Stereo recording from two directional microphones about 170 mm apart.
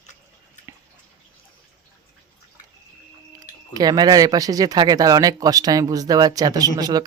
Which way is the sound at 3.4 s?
25° right (ahead or behind).